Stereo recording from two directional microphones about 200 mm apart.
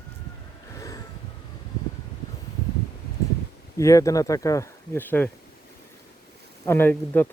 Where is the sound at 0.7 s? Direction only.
15° left (ahead or behind).